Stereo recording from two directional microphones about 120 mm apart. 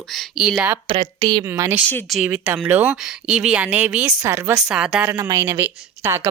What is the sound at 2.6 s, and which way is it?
Speech, 15° right (ahead or behind).